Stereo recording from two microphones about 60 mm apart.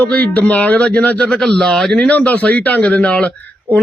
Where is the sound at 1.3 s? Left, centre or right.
Centre.